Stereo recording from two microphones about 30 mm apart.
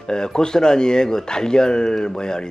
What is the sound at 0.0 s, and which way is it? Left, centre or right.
Speech, left.